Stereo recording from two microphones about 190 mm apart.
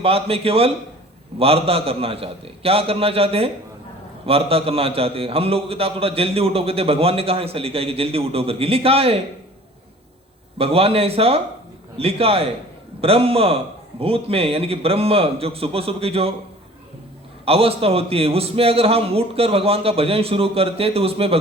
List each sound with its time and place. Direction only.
0.0 s a man's voice: 30° right (ahead or behind)
10.6 s a man's voice: 30° right (ahead or behind)
17.4 s a man's voice: 30° right (ahead or behind)